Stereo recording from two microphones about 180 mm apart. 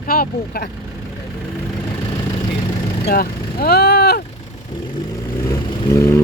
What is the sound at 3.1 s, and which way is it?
Vehicle, 55° left (ahead or behind).